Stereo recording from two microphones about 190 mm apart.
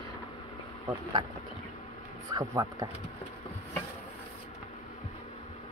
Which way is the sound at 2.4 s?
15° right (ahead or behind).